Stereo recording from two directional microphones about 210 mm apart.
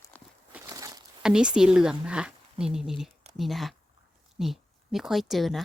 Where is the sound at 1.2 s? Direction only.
5° right (ahead or behind).